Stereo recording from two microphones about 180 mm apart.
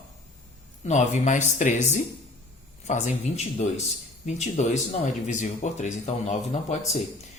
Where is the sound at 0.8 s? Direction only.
40° left (ahead or behind).